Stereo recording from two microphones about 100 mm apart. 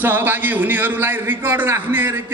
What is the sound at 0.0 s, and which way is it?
A man's voice, 20° right (ahead or behind).